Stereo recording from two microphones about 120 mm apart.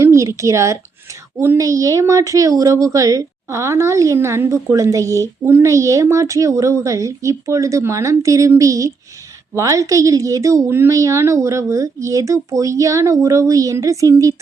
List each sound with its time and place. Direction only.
0.0 s a woman's voice: 25° right (ahead or behind)